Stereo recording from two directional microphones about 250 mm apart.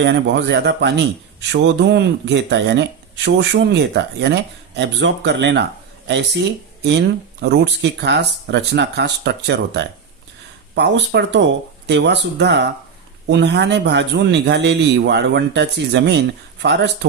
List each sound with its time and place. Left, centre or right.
0.0 s speech: right
7.4 s speech: right